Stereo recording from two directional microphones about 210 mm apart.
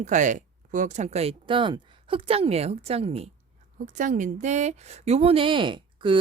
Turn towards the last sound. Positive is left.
turn(degrees=-25)  # may be behind; listen again after turning